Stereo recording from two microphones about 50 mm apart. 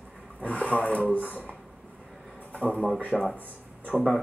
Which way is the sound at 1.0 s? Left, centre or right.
Right.